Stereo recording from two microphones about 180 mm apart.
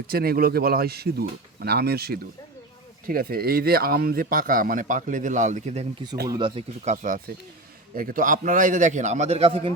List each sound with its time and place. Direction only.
0.1 s speech: 55° right (ahead or behind)
6.2 s speech: 25° right (ahead or behind)
6.8 s speech: 45° right (ahead or behind)